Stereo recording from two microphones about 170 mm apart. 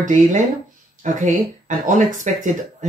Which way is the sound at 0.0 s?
45° right (ahead or behind).